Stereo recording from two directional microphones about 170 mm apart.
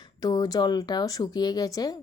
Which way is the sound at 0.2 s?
20° left (ahead or behind).